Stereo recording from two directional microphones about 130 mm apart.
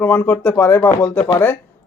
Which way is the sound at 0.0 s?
15° left (ahead or behind).